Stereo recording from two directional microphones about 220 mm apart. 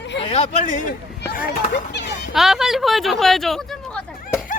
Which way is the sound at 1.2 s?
45° left (ahead or behind).